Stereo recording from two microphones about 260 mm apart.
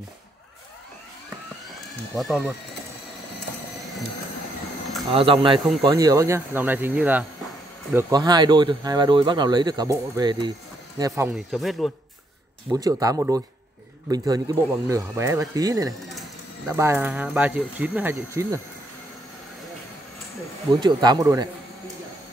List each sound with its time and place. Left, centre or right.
2.1 s speech: centre
5.1 s speech: right; by 11.9 s centre
12.7 s speech: centre
20.8 s speech: centre